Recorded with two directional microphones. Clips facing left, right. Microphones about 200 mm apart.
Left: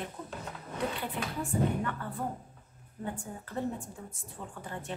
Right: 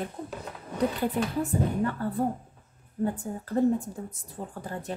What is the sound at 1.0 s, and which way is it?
A woman's voice, 40° right (ahead or behind).